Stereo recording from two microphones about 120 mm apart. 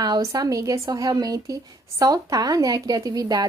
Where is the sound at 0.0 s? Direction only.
30° right (ahead or behind).